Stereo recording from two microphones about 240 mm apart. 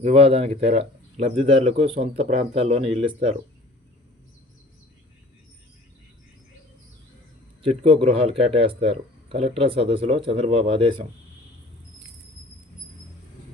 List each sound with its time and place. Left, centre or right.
0.0 s speech: right
7.6 s speech: right